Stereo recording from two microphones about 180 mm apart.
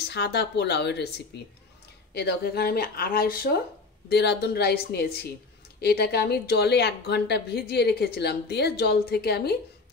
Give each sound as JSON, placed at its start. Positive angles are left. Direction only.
{"t": 0.1, "sound": "a woman's voice", "side_deg": 65}
{"t": 4.1, "sound": "a woman's voice", "side_deg": 65}